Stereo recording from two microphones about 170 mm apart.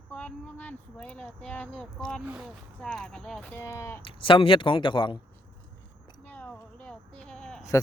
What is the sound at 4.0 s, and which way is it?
Speech, 30° left (ahead or behind).